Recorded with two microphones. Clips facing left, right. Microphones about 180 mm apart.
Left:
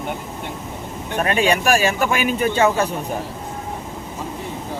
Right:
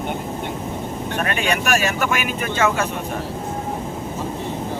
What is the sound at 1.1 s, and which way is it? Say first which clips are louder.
Speech: left 5 dB; 35° left (ahead or behind).